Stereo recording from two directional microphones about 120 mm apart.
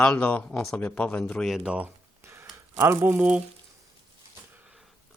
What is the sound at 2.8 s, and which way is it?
Speech, 20° right (ahead or behind).